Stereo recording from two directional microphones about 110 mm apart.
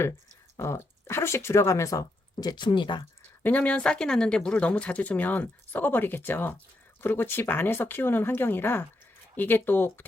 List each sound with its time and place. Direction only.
0.5 s speech: 25° left (ahead or behind); by 3.1 s 45° left (ahead or behind)
3.4 s speech: 15° left (ahead or behind)